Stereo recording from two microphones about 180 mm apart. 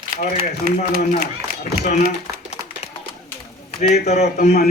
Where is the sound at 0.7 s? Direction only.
55° right (ahead or behind).